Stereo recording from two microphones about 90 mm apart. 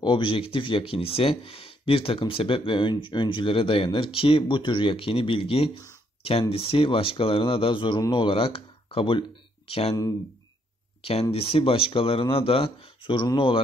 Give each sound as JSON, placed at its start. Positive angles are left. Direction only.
{"t": 0.0, "sound": "speech", "side_deg": 65}
{"t": 11.0, "sound": "speech", "side_deg": 90}